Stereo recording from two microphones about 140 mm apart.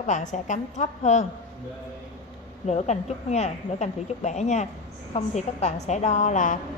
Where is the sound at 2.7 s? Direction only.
50° left (ahead or behind).